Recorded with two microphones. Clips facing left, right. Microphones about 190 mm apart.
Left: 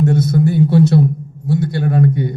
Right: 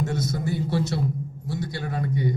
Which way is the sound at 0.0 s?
55° left (ahead or behind).